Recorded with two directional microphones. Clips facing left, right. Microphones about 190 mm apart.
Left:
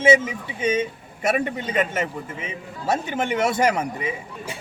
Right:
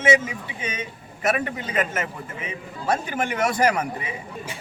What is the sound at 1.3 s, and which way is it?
A man's voice, 30° left (ahead or behind).